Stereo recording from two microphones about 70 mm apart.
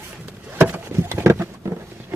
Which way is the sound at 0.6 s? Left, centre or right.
Right.